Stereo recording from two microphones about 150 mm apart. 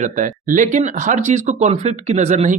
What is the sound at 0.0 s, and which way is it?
Speech, 60° right (ahead or behind).